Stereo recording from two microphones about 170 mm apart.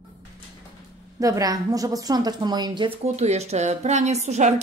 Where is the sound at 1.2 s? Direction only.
20° right (ahead or behind).